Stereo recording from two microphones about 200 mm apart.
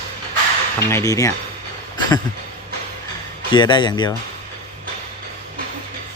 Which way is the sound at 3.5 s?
20° left (ahead or behind).